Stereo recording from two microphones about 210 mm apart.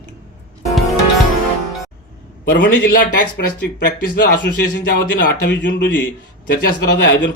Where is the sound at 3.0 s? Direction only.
40° left (ahead or behind).